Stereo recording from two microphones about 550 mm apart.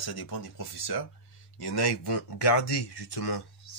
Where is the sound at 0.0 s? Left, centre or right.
Left.